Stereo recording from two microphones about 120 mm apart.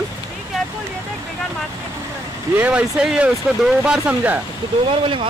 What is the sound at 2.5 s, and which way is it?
Speech, 10° right (ahead or behind).